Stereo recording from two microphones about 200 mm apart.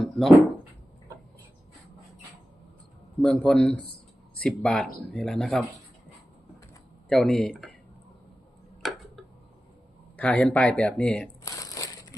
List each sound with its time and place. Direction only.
0.0 s a sound: centre (ahead or behind)
3.2 s speech: 5° left (ahead or behind)
7.1 s speech: centre (ahead or behind)
8.8 s tick-tock: centre (ahead or behind)
10.2 s speech: 5° left (ahead or behind)
11.4 s crumpling: 15° left (ahead or behind)